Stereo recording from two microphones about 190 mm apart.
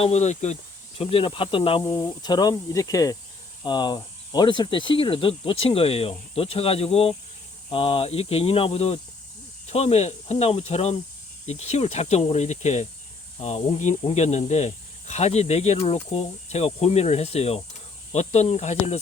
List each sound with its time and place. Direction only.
0.0 s speech: 35° left (ahead or behind)